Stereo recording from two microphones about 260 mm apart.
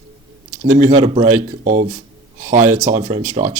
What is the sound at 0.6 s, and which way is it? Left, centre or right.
Speech, right.